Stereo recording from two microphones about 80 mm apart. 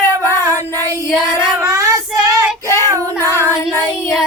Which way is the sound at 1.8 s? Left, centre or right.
Right.